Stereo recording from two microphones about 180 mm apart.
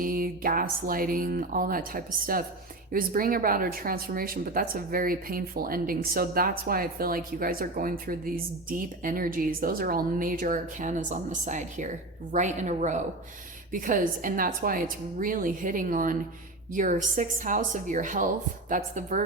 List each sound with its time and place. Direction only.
0.0 s speech: 50° right (ahead or behind)